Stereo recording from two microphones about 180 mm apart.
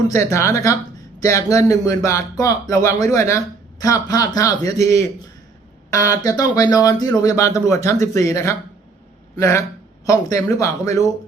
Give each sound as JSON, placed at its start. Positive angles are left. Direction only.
{"t": 0.1, "sound": "speech", "side_deg": 15}